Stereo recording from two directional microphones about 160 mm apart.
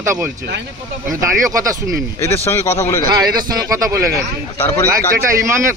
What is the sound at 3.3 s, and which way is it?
Speech, 20° right (ahead or behind).